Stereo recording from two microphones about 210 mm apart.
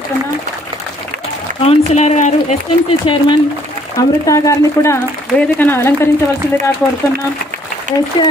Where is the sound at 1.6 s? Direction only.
30° left (ahead or behind).